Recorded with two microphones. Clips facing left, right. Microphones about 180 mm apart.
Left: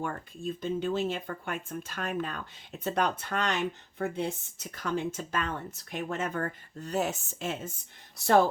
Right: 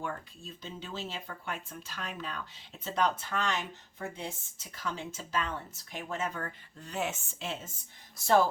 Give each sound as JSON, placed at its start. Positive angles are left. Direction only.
{"t": 0.0, "sound": "speech", "side_deg": 55}